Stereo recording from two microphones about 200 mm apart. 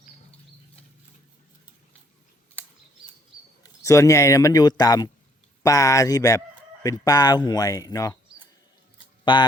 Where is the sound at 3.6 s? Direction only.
15° left (ahead or behind).